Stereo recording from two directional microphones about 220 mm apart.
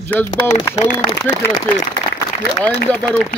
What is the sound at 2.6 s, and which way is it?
Speech, 5° left (ahead or behind).